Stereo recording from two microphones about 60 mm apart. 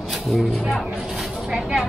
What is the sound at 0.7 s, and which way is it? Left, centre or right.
Speech, centre.